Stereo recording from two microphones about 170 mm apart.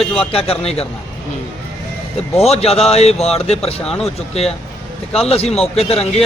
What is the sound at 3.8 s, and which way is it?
Speech, 5° left (ahead or behind).